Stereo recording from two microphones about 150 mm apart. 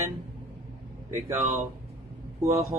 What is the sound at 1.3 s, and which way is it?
Speech, 50° right (ahead or behind).